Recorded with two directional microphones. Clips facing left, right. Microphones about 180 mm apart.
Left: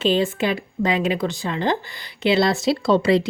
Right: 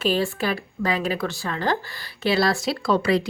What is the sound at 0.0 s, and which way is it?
Speech, 20° left (ahead or behind).